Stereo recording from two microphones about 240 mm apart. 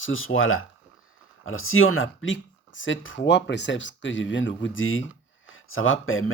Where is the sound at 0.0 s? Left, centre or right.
Left.